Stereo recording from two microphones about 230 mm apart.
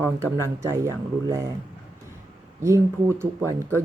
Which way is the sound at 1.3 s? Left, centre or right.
Centre.